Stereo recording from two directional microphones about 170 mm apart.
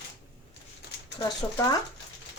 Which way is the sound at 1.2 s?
20° left (ahead or behind).